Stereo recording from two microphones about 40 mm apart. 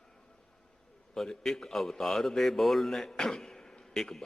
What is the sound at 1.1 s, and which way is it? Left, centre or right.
A man's voice, centre.